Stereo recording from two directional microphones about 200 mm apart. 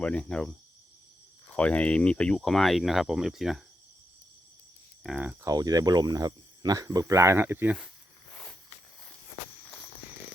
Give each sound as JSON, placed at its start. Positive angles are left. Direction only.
{"t": 0.0, "sound": "speech", "side_deg": 5}
{"t": 1.5, "sound": "speech", "side_deg": 5}
{"t": 5.0, "sound": "speech", "side_deg": -5}
{"t": 5.5, "sound": "speech", "side_deg": -20}
{"t": 8.3, "sound": "a sound", "side_deg": 10}